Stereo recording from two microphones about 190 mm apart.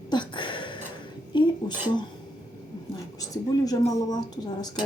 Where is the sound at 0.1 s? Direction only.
25° left (ahead or behind).